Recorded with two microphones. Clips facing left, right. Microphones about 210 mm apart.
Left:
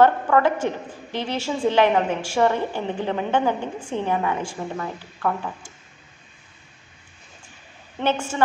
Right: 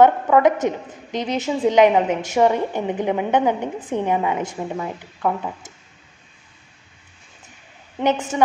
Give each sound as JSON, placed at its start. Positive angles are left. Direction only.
{"t": 0.0, "sound": "a woman's voice", "side_deg": -20}
{"t": 8.0, "sound": "a woman's voice", "side_deg": -20}